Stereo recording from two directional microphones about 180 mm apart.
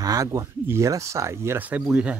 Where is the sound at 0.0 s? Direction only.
20° right (ahead or behind).